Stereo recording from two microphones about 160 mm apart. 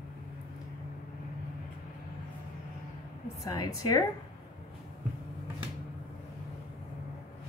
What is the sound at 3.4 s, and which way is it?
Speech, 20° left (ahead or behind).